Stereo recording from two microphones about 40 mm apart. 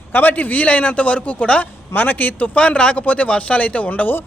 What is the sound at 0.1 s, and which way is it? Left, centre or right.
Speech, left.